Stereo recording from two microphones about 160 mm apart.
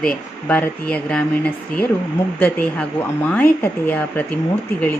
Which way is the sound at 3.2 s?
10° left (ahead or behind).